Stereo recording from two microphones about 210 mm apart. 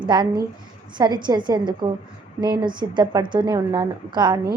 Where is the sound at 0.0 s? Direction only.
20° right (ahead or behind).